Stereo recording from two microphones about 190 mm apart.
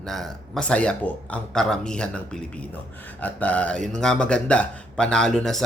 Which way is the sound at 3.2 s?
10° left (ahead or behind).